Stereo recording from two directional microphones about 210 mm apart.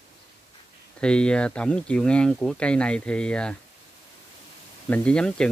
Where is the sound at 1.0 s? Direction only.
5° left (ahead or behind).